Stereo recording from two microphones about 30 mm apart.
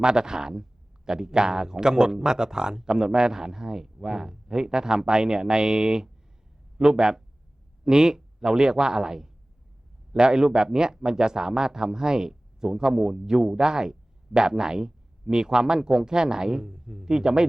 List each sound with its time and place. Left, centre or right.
0.0 s speech: right